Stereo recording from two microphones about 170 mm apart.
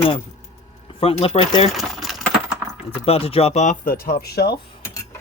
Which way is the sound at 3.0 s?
35° left (ahead or behind).